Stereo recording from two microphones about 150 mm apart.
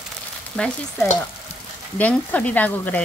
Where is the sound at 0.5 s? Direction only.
5° left (ahead or behind).